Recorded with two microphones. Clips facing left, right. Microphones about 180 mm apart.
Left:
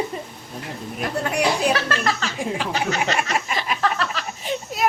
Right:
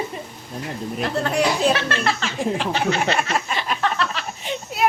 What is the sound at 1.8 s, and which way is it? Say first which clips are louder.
A child's voice: even; 40° left (ahead or behind).